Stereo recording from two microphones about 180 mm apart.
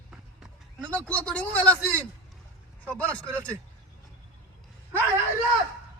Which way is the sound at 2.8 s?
5° left (ahead or behind).